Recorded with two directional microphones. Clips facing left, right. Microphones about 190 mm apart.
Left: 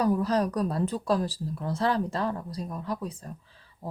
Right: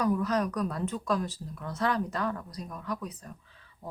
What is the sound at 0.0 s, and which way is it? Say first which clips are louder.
Speech: left 3 dB; 30° left (ahead or behind).